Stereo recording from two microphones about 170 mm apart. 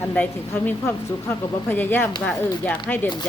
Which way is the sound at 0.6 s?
10° left (ahead or behind).